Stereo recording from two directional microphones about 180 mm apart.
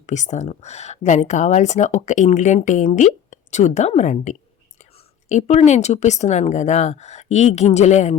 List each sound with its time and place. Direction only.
0.0 s speech: 40° left (ahead or behind)